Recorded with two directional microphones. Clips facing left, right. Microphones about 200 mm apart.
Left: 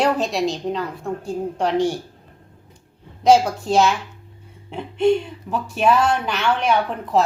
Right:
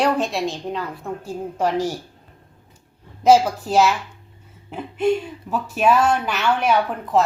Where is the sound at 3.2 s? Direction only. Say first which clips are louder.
Even; 5° right (ahead or behind).